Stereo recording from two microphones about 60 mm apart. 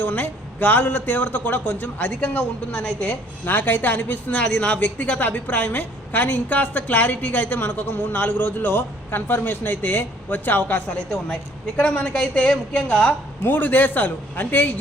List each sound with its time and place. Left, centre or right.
0.0 s a man's voice: left
3.4 s a man's voice: left
13.4 s speech: left